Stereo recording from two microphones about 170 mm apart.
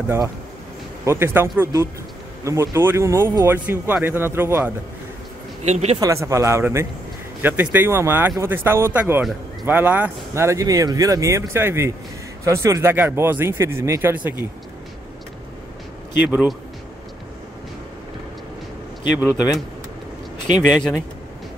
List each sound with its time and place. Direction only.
1.0 s speech: 15° right (ahead or behind)
5.7 s speech: 40° right (ahead or behind)
5.9 s speech: 20° right (ahead or behind)
16.3 s speech: 5° right (ahead or behind)
20.5 s speech: 5° right (ahead or behind)